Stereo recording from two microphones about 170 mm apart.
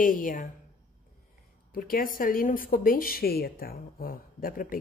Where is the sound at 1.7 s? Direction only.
55° left (ahead or behind).